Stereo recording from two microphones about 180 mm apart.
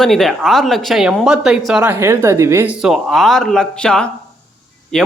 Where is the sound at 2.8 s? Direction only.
Centre (ahead or behind).